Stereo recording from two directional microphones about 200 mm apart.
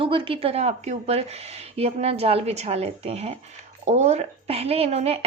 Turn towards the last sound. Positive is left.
turn(degrees=-30)  # may be behind; listen again after turning